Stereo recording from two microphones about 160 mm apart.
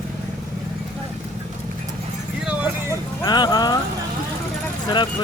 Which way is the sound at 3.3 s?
25° left (ahead or behind).